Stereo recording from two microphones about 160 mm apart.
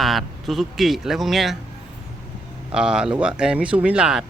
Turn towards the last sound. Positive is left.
turn(degrees=-5)  # may be behind; listen again after turning